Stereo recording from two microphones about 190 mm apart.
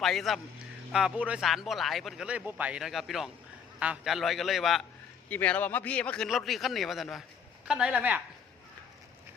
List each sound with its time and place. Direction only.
0.0 s speech: centre (ahead or behind)